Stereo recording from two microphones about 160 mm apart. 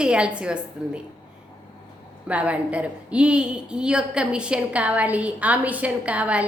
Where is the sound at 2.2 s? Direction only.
10° right (ahead or behind).